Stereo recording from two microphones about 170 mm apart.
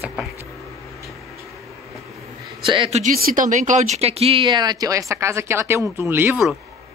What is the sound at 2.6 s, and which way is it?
Speech, 30° right (ahead or behind).